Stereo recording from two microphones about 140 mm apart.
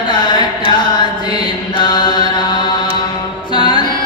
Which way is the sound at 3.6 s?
35° left (ahead or behind).